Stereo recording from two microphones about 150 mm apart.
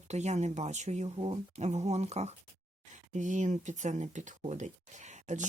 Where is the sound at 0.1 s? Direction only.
50° right (ahead or behind).